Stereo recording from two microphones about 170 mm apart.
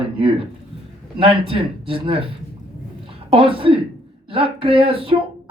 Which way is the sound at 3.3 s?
30° right (ahead or behind).